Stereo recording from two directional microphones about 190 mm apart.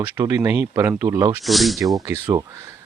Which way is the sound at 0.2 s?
15° right (ahead or behind).